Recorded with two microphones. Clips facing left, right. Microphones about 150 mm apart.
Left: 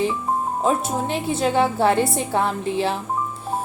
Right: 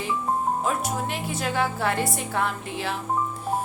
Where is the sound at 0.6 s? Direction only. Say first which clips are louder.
Left 5 dB; 30° left (ahead or behind).